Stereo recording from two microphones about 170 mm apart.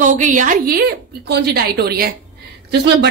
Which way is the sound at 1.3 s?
65° right (ahead or behind).